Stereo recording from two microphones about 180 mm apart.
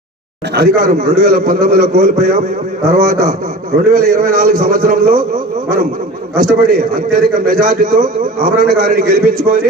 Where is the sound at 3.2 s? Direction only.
45° right (ahead or behind).